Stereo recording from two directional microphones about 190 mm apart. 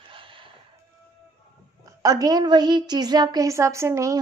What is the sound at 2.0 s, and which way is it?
A woman's voice, 20° right (ahead or behind).